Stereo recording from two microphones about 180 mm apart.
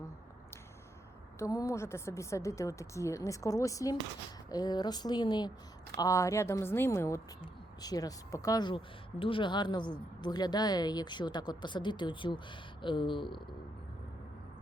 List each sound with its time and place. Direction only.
1.4 s a woman's voice: 15° left (ahead or behind)